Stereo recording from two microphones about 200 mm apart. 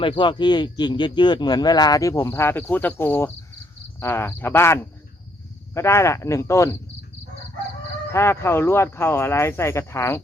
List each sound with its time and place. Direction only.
0.0 s speech: 25° left (ahead or behind)
8.1 s speech: 15° left (ahead or behind)